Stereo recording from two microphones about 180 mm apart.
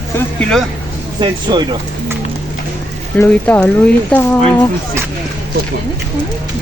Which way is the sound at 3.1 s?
10° left (ahead or behind).